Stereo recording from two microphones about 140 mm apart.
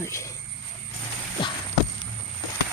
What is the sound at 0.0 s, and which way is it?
Speech, 20° left (ahead or behind).